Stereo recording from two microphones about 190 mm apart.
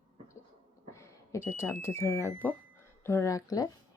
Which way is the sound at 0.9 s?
15° left (ahead or behind).